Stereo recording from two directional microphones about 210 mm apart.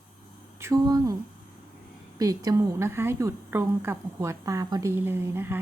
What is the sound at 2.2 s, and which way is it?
A woman's voice, 15° right (ahead or behind).